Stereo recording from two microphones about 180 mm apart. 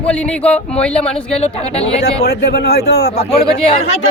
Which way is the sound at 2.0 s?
65° left (ahead or behind).